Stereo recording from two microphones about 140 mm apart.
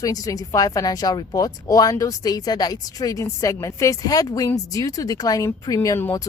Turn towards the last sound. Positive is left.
turn(degrees=20)  # may be behind; listen again after turning